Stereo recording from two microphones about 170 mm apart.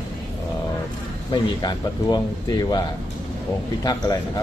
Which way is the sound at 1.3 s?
25° left (ahead or behind).